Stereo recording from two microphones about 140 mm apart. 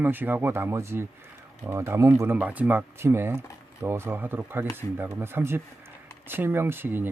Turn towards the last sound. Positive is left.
turn(degrees=-15)  # may be behind; listen again after turning